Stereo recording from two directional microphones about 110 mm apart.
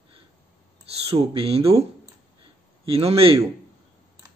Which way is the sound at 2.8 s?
60° right (ahead or behind).